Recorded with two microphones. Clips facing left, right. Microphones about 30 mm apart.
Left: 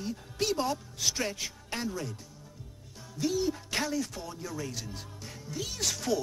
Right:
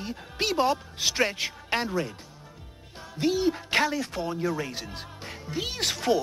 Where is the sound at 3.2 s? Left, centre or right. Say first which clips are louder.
Right 5 dB; right.